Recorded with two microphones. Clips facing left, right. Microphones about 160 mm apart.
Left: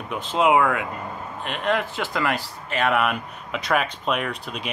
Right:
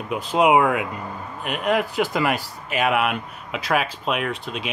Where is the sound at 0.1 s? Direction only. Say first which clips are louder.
Right 2 dB; 10° right (ahead or behind).